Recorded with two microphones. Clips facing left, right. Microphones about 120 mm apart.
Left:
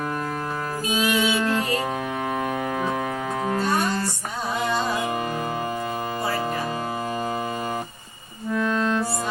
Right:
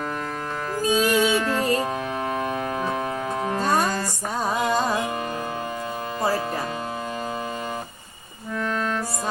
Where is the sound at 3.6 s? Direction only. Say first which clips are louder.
Right 2 dB; 40° right (ahead or behind).